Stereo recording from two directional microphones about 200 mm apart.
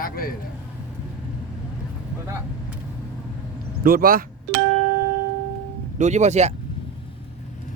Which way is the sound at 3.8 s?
45° right (ahead or behind).